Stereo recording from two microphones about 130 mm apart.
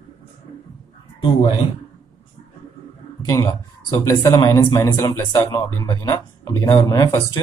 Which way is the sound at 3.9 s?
25° left (ahead or behind).